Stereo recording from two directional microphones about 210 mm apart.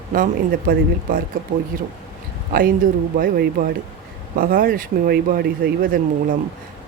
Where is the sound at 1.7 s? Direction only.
45° right (ahead or behind).